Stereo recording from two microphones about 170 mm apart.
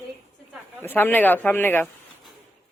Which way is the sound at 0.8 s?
10° left (ahead or behind).